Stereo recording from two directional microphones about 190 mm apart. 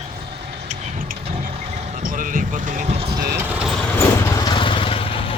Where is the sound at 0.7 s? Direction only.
40° right (ahead or behind).